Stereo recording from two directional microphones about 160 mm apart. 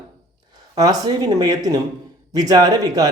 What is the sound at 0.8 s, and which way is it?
Speech, 25° right (ahead or behind).